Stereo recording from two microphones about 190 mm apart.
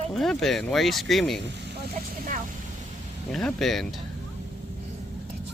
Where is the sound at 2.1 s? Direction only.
45° right (ahead or behind).